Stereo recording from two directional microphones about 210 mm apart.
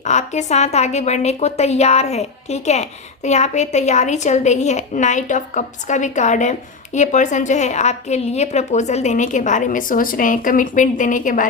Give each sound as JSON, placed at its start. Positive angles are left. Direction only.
{"t": 0.0, "sound": "a woman's voice", "side_deg": 35}